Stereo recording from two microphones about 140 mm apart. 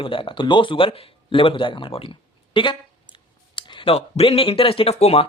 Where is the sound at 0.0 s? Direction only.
40° left (ahead or behind).